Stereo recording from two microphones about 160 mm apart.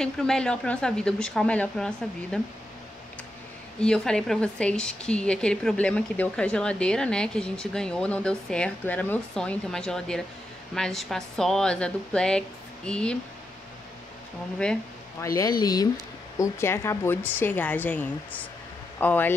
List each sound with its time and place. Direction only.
0.0 s a woman's voice: 5° left (ahead or behind)
3.8 s a woman's voice: 5° left (ahead or behind)
15.1 s a woman's voice: 20° left (ahead or behind)